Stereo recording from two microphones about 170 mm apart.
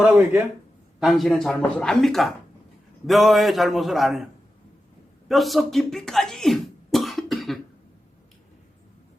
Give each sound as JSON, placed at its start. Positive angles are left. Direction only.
{"t": 0.0, "sound": "speech", "side_deg": -5}
{"t": 5.3, "sound": "speech", "side_deg": 0}